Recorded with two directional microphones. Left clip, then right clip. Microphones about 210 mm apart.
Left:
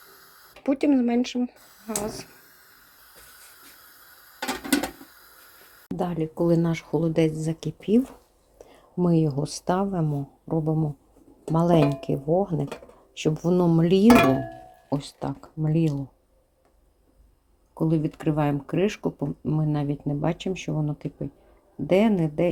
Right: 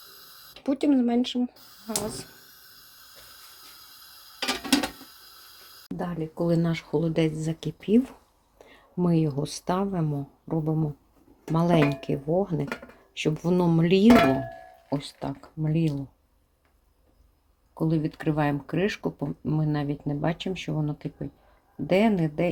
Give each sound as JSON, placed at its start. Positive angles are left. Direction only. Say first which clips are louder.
{"t": 0.6, "sound": "speech", "louder": "left 2 dB", "side_deg": 5}
{"t": 6.0, "sound": "speech", "louder": "left 5 dB", "side_deg": 25}
{"t": 6.3, "sound": "speech", "louder": "left 2 dB", "side_deg": 10}
{"t": 8.5, "sound": "a sound", "louder": "left 3 dB", "side_deg": 0}
{"t": 9.6, "sound": "speech", "louder": "left 3 dB", "side_deg": 0}
{"t": 17.7, "sound": "speech", "louder": "left 2 dB", "side_deg": 5}